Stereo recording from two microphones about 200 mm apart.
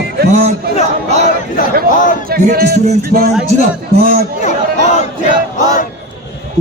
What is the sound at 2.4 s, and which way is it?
Speech, 50° right (ahead or behind).